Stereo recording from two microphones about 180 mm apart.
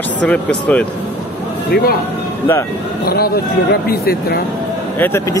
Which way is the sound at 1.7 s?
55° left (ahead or behind).